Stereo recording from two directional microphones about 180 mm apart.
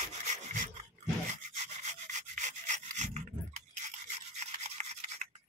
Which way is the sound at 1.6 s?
40° right (ahead or behind).